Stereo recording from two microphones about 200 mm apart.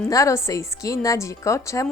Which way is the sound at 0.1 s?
15° left (ahead or behind).